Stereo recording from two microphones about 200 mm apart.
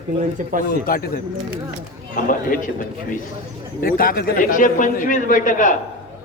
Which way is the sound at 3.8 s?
45° left (ahead or behind).